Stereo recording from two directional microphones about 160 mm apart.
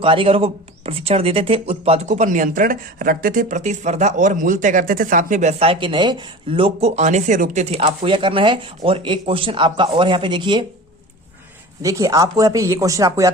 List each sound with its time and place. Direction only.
0.0 s speech: 35° right (ahead or behind)
11.8 s speech: 20° right (ahead or behind)